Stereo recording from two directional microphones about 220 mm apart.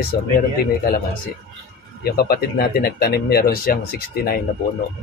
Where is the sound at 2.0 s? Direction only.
45° left (ahead or behind).